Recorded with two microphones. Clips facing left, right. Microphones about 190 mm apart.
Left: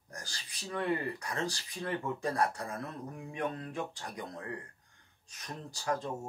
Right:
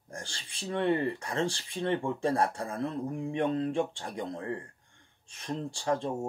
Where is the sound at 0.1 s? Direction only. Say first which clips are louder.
Right 5 dB; 25° right (ahead or behind).